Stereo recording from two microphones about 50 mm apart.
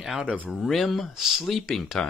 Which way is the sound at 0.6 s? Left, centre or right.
Centre.